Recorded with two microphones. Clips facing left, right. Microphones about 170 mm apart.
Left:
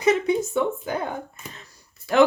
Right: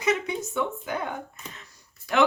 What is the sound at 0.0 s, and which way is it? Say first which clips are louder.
Speech: left 6 dB; 35° left (ahead or behind).